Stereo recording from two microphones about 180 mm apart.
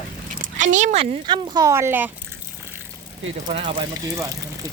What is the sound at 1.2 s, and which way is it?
Speech, 25° right (ahead or behind).